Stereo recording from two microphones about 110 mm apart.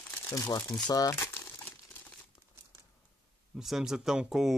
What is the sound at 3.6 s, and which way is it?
Speech, 5° right (ahead or behind).